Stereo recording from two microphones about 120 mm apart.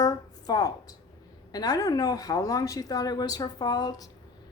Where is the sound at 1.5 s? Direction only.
30° left (ahead or behind).